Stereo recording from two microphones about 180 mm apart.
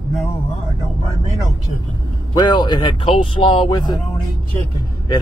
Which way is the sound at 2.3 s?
25° left (ahead or behind).